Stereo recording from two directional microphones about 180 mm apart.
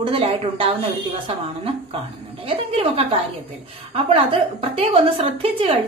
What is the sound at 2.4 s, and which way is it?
A woman's voice, 30° right (ahead or behind).